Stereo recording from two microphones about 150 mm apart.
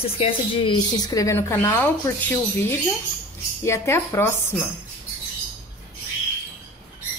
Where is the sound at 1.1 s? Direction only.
20° left (ahead or behind).